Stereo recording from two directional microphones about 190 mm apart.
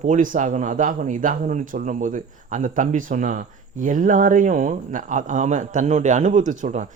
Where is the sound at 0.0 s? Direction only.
45° right (ahead or behind).